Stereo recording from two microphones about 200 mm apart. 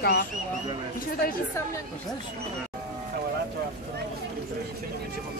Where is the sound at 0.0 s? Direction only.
55° left (ahead or behind).